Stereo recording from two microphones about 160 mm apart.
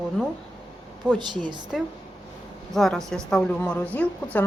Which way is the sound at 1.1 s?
30° right (ahead or behind).